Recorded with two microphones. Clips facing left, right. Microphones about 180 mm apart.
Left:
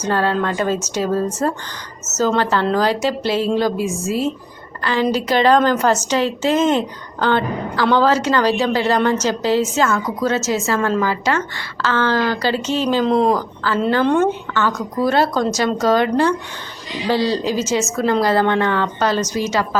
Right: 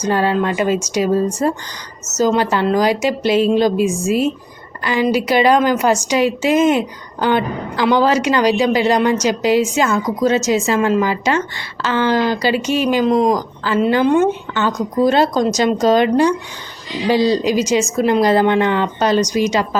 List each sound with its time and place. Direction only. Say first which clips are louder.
0.0 s a woman's voice: right 2 dB; 15° right (ahead or behind)